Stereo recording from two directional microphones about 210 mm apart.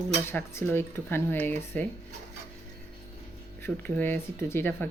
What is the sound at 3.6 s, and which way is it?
Speech, 10° left (ahead or behind).